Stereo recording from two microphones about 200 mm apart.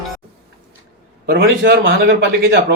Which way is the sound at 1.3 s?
50° right (ahead or behind).